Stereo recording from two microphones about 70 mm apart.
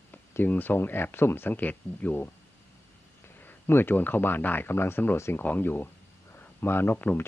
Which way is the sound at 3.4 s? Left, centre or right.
Left.